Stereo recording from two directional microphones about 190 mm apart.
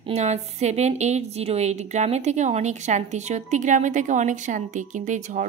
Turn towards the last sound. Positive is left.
turn(degrees=-40)  # may be behind; listen again after turning